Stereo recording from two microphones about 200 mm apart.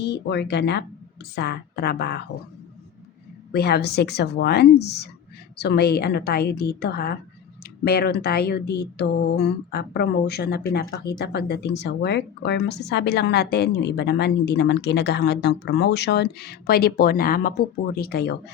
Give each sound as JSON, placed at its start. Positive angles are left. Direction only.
{"t": 0.0, "sound": "speech", "side_deg": 60}
{"t": 3.5, "sound": "speech", "side_deg": 55}